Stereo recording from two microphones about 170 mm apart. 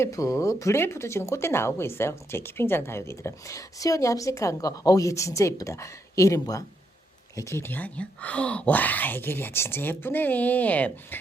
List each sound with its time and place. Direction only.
0.0 s speech: 20° left (ahead or behind)